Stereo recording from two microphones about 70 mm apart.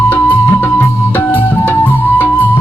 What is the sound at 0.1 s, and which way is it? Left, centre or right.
Music, left.